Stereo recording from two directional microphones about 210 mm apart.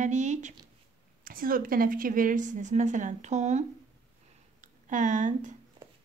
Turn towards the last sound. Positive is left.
turn(degrees=-35)  # may be behind; listen again after turning